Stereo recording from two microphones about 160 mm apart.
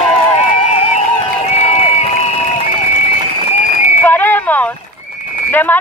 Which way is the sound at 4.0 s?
10° left (ahead or behind).